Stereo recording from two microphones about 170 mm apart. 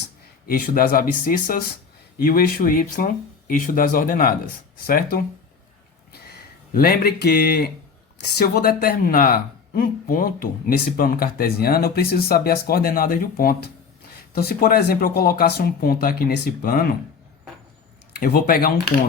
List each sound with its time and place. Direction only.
0.4 s speech: 60° left (ahead or behind)
6.1 s speech: 70° left (ahead or behind)
18.2 s speech: 65° left (ahead or behind)